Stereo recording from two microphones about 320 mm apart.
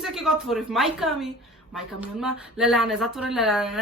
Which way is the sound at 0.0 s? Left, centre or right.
Centre.